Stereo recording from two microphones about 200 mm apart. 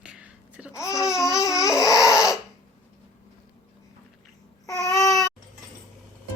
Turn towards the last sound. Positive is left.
turn(degrees=15)  # may be behind; listen again after turning